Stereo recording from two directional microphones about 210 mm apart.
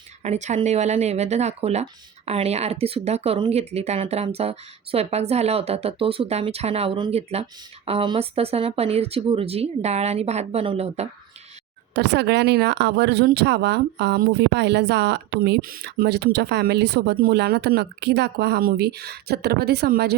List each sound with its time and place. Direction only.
0.2 s speech: 35° right (ahead or behind)
11.9 s speech: 55° right (ahead or behind)